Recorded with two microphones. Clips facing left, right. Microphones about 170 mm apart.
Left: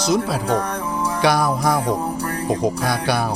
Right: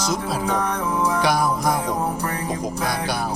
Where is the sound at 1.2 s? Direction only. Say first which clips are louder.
Left 7 dB; 70° left (ahead or behind).